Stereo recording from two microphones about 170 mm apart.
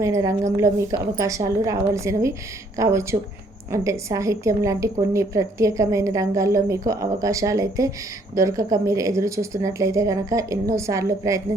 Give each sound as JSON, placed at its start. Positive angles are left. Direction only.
{"t": 0.0, "sound": "a woman's voice", "side_deg": -20}